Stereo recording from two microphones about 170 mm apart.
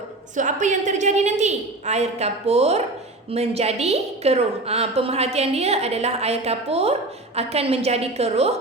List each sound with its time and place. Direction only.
0.3 s a woman's voice: 45° right (ahead or behind)